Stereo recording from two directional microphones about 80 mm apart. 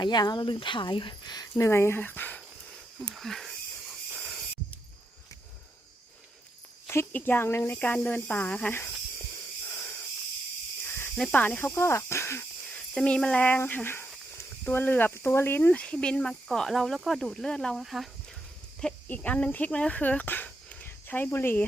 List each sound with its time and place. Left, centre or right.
0.0 s speech: left
1.5 s speech: left
3.0 s speech: centre
4.2 s a sound: centre
6.8 s speech: left
7.9 s speech: centre
9.6 s owl: left
10.8 s snake: left
11.3 s speech: centre
11.7 s speech: left
12.6 s speech: centre
19.0 s speech: centre